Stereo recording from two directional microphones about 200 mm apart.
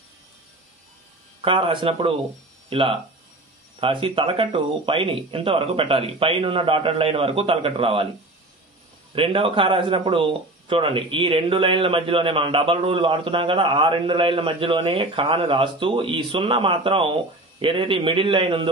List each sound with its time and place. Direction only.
1.4 s speech: 25° right (ahead or behind)
9.1 s speech: 25° right (ahead or behind)